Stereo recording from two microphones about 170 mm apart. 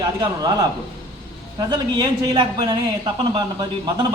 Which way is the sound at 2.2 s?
25° right (ahead or behind).